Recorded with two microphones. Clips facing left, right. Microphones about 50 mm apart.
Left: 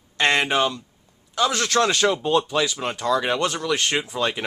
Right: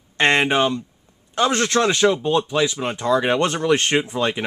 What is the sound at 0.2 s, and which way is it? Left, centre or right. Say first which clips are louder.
A man's voice: right 3 dB; right.